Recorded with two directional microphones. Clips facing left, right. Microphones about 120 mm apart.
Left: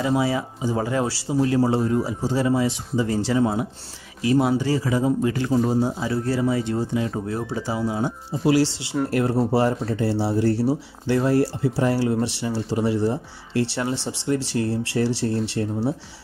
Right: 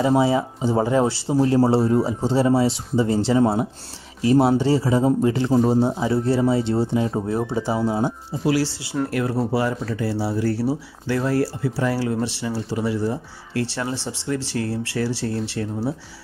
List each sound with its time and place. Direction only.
0.0 s speech: 25° right (ahead or behind)
9.1 s speech: 30° left (ahead or behind)